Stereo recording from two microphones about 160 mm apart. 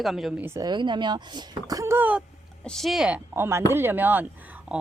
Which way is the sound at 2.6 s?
5° left (ahead or behind).